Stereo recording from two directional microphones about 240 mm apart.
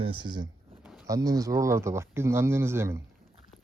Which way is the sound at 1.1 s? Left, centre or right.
Centre.